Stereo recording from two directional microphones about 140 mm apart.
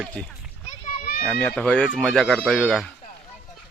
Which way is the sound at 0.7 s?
90° left.